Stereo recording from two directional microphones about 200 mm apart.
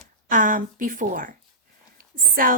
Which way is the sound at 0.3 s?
40° right (ahead or behind).